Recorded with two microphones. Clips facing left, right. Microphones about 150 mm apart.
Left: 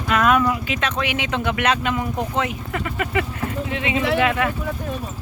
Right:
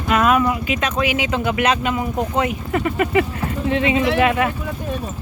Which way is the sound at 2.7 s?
30° right (ahead or behind).